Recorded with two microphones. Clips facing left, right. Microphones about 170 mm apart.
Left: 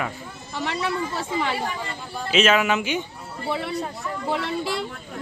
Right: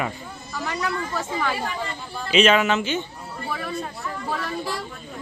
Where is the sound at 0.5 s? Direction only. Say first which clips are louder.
Left 1 dB; 25° left (ahead or behind).